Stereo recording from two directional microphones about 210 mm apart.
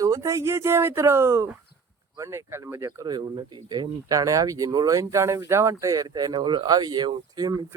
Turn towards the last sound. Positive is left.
turn(degrees=-15)  # may be behind; listen again after turning